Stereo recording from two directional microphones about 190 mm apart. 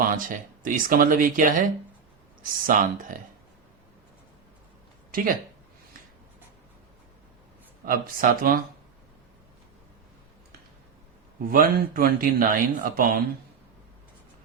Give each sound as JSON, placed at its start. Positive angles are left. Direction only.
{"t": 0.0, "sound": "speech", "side_deg": -45}
{"t": 5.1, "sound": "speech", "side_deg": -50}
{"t": 7.9, "sound": "speech", "side_deg": -50}
{"t": 11.4, "sound": "speech", "side_deg": -50}